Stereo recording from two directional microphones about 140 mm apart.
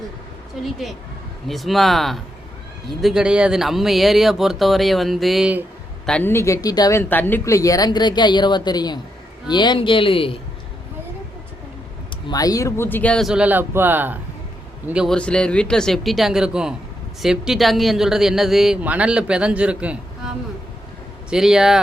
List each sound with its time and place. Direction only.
0.6 s speech: centre (ahead or behind)
6.1 s a woman's voice: 10° left (ahead or behind)
6.3 s speech: 20° left (ahead or behind)
7.0 s speech: 15° left (ahead or behind); by 10.3 s 40° left (ahead or behind)
12.3 s speech: 25° left (ahead or behind); by 13.2 s 10° left (ahead or behind)
13.2 s speech: 5° right (ahead or behind)
15.1 s speech: 5° left (ahead or behind)